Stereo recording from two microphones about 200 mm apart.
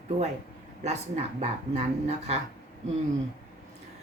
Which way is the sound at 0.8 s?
35° right (ahead or behind).